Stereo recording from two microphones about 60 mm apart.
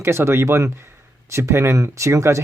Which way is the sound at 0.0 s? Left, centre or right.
Right.